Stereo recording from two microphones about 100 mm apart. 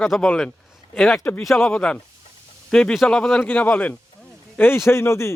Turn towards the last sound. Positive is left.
turn(degrees=25)  # may be behind; listen again after turning